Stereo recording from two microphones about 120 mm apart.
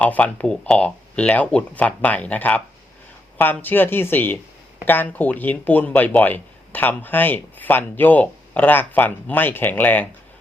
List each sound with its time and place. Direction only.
0.0 s speech: 15° left (ahead or behind)